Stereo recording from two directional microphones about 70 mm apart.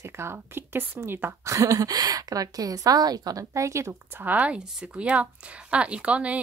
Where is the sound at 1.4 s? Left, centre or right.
Right.